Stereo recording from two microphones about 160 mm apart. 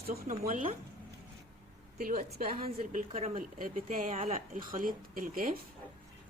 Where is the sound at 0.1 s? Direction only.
55° right (ahead or behind).